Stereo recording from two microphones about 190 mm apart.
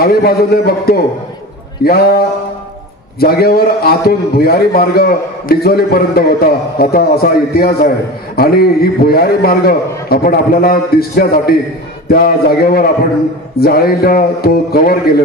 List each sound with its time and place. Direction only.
0.0 s a man's voice: 55° left (ahead or behind)